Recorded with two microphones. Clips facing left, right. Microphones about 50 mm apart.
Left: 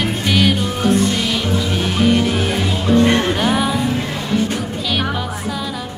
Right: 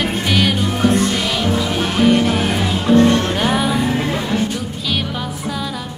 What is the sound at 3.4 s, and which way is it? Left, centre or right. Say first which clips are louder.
Music: even; centre.